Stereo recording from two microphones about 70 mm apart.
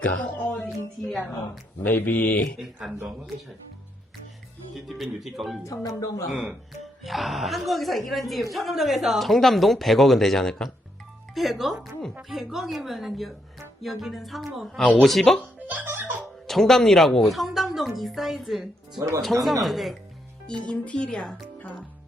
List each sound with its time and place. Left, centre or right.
0.0 s music: centre
1.8 s music: left
2.8 s speech: centre
4.7 s a woman's voice: centre
5.6 s speech: left
6.3 s speech: centre
7.0 s a woman's voice: centre
15.7 s music: right
16.5 s a woman's voice: centre
20.5 s speech: centre
21.6 s music: left